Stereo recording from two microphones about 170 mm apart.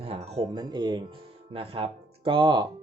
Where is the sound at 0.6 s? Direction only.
25° right (ahead or behind).